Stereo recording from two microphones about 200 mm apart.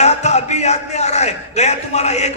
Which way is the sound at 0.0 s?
35° left (ahead or behind).